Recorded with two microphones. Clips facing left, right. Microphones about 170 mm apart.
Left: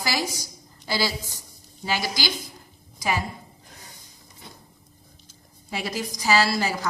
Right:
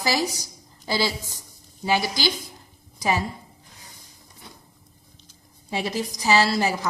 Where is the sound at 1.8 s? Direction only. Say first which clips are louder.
Right 4 dB; 20° right (ahead or behind).